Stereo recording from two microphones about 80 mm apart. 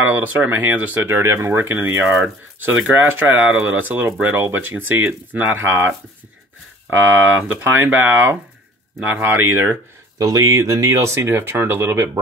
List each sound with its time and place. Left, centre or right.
0.0 s speech: right
7.2 s speech: right
10.1 s speech: right